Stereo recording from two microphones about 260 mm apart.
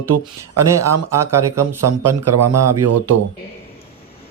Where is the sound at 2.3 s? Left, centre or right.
Right.